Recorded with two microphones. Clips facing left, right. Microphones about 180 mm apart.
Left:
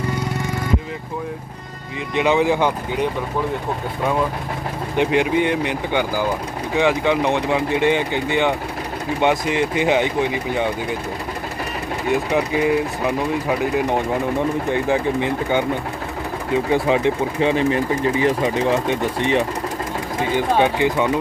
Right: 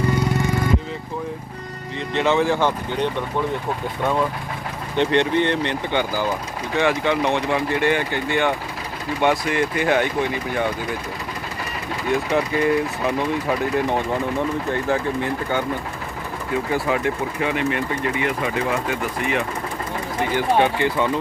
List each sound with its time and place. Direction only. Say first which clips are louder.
2.1 s speech: left 2 dB; 15° left (ahead or behind)
4.9 s speech: left 1 dB; 10° left (ahead or behind)
12.3 s speech: even; 10° left (ahead or behind)
16.7 s speech: left 4 dB; 20° left (ahead or behind)
18.5 s speech: left 4 dB; 25° left (ahead or behind)
20.3 s speech: left 1 dB; 15° left (ahead or behind)